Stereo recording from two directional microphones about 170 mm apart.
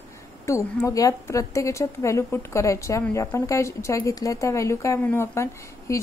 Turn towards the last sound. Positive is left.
turn(degrees=20)  # may be behind; listen again after turning